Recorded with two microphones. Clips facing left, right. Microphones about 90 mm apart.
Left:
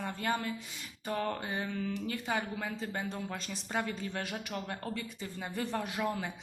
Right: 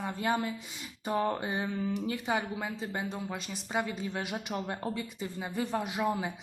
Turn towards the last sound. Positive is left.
turn(degrees=-15)  # may be behind; listen again after turning